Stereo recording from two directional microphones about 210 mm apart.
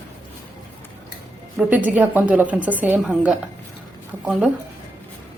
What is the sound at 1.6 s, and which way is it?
A woman's voice, 5° right (ahead or behind).